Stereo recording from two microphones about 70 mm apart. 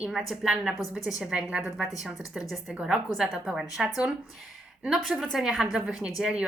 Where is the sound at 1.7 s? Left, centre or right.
Centre.